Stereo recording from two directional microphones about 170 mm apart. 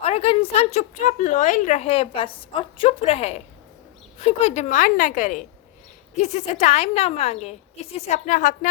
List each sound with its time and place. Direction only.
0.0 s a woman's voice: 35° left (ahead or behind)